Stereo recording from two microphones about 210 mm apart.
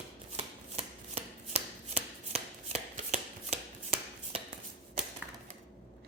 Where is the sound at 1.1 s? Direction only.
30° right (ahead or behind).